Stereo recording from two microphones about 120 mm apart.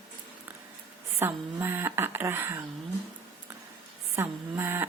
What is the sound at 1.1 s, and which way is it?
A woman's voice, 20° right (ahead or behind).